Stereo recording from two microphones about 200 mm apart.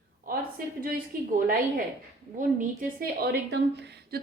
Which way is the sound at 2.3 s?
45° right (ahead or behind).